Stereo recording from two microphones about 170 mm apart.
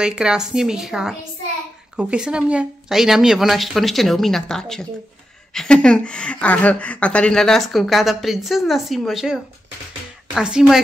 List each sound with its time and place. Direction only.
0.0 s speech: 5° right (ahead or behind)